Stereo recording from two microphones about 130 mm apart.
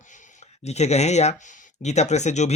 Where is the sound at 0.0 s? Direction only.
70° left (ahead or behind).